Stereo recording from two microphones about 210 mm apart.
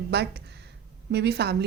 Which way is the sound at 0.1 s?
50° right (ahead or behind).